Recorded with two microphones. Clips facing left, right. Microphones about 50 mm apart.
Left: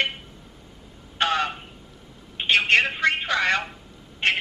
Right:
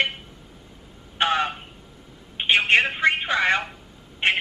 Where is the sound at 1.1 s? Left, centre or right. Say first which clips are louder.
Right 1 dB; centre.